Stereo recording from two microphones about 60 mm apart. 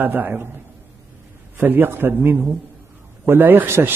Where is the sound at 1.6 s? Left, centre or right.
Right.